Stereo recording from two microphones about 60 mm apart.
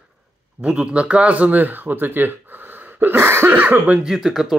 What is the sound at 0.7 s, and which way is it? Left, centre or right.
Speech, centre.